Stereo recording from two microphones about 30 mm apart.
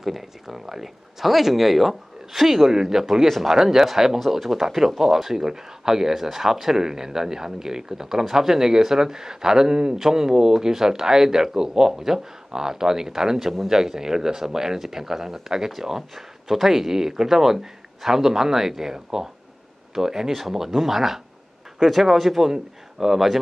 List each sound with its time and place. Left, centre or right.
0.0 s speech: centre
3.1 s speech: centre
3.4 s speech: centre